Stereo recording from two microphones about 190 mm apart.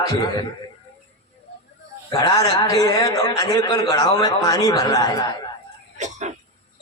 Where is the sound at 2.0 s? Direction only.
15° left (ahead or behind).